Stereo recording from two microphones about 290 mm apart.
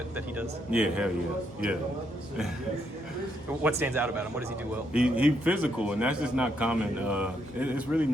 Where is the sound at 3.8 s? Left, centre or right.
Centre.